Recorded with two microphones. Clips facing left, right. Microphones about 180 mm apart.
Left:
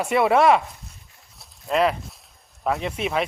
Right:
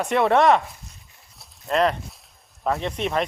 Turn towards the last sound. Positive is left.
turn(degrees=5)  # may be behind; listen again after turning